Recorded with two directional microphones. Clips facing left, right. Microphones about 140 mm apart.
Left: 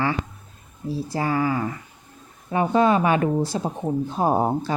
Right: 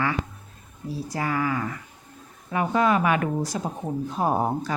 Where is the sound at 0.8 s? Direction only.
30° left (ahead or behind).